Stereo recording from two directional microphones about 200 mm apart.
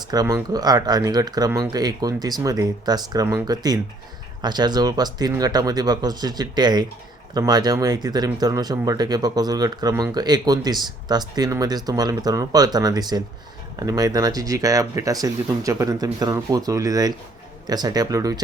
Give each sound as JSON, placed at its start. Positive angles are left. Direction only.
{"t": 0.0, "sound": "speech", "side_deg": -20}